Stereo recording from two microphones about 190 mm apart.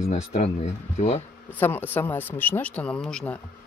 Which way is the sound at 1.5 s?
10° left (ahead or behind).